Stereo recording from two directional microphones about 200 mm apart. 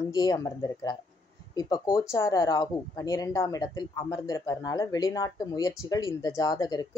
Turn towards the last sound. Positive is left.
turn(degrees=20)  # may be behind; listen again after turning